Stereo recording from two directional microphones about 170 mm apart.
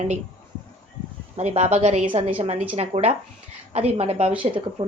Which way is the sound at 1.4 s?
40° right (ahead or behind).